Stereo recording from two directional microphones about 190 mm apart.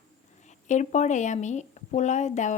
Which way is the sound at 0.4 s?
40° left (ahead or behind).